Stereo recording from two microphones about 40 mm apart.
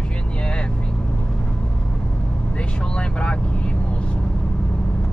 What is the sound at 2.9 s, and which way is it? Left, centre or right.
Speech, left.